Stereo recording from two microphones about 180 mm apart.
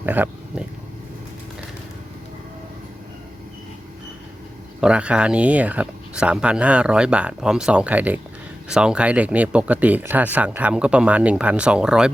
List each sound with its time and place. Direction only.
0.0 s speech: 10° right (ahead or behind)
4.8 s speech: 5° right (ahead or behind)